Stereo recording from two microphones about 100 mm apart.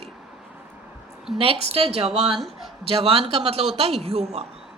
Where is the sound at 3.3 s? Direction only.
90° right.